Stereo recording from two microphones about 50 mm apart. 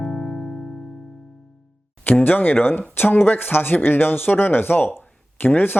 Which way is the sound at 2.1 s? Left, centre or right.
Left.